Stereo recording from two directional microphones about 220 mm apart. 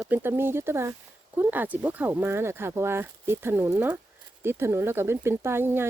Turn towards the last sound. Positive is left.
turn(degrees=-10)  # may be behind; listen again after turning